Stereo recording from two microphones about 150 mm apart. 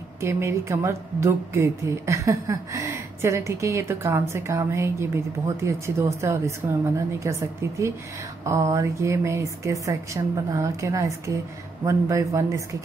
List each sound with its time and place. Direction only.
0.2 s a woman's voice: 15° right (ahead or behind)